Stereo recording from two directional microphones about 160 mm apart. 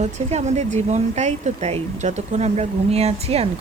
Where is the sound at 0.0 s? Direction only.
45° right (ahead or behind).